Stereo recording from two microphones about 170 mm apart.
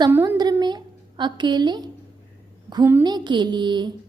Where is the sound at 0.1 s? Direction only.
20° right (ahead or behind).